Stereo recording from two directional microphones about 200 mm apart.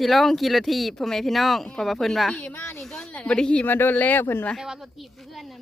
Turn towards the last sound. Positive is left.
turn(degrees=0)  # may be behind; listen again after turning